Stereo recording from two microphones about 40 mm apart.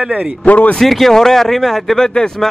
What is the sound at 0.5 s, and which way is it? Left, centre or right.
Speech, left.